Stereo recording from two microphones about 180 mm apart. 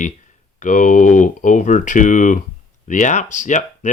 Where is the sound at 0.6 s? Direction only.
45° left (ahead or behind).